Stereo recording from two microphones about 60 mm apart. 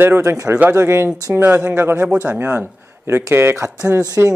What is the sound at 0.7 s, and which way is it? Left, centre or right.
Speech, right.